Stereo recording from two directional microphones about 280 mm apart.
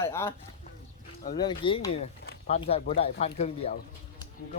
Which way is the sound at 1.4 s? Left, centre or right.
Centre.